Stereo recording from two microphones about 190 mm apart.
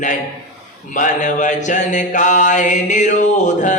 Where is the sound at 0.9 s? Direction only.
40° left (ahead or behind).